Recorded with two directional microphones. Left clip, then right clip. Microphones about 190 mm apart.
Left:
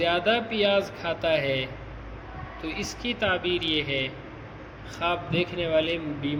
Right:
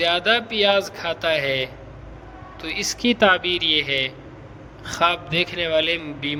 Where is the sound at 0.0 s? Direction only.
45° right (ahead or behind).